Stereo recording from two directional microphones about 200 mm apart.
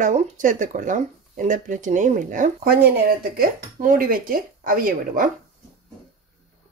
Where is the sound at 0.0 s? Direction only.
35° right (ahead or behind).